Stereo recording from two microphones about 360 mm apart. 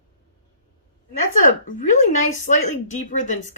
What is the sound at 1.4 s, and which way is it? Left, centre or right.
A woman's voice, left.